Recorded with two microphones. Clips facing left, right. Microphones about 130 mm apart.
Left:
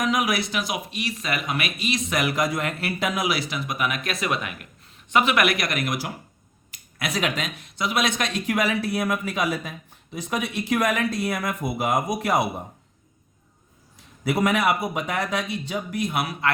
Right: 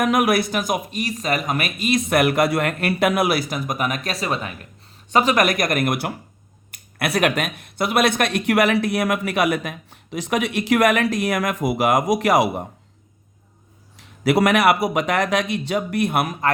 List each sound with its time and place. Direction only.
0.0 s speech: 55° right (ahead or behind); by 12.6 s 85° right
14.3 s speech: 85° right; by 16.3 s 55° right (ahead or behind)